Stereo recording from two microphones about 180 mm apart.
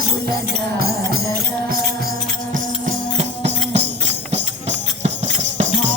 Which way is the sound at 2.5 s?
45° right (ahead or behind).